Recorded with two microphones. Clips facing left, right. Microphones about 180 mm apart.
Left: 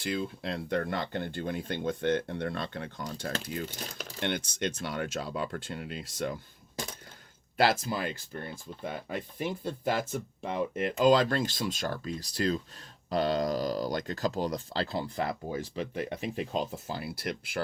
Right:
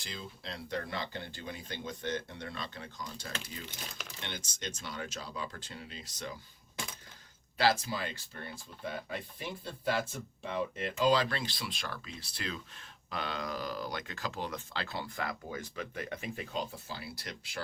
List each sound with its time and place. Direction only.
0.0 s speech: 60° left (ahead or behind)
7.6 s speech: 55° left (ahead or behind); by 16.6 s 25° left (ahead or behind)
16.6 s speech: 50° left (ahead or behind)